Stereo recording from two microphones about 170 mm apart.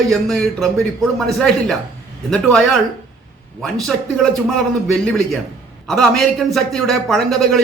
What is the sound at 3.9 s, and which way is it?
A man's voice, centre (ahead or behind).